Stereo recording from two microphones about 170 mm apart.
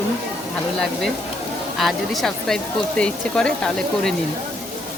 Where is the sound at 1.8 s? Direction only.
Centre (ahead or behind).